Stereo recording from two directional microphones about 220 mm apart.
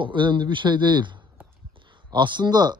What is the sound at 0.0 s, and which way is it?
Speech, 20° right (ahead or behind).